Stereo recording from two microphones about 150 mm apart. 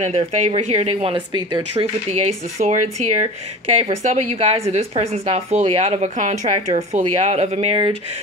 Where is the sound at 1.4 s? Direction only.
30° right (ahead or behind).